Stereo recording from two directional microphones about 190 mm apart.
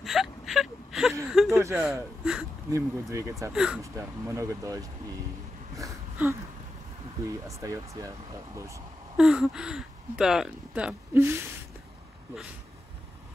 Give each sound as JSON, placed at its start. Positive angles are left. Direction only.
{"t": 0.0, "sound": "whimper", "side_deg": 0}
{"t": 1.3, "sound": "a sound", "side_deg": 0}
{"t": 1.6, "sound": "a sound", "side_deg": -15}
{"t": 2.7, "sound": "speech", "side_deg": -15}
{"t": 3.5, "sound": "speech", "side_deg": -5}
{"t": 3.8, "sound": "speech", "side_deg": -15}
{"t": 5.8, "sound": "a sound", "side_deg": -15}
{"t": 7.2, "sound": "speech", "side_deg": -15}
{"t": 9.1, "sound": "speech", "side_deg": -5}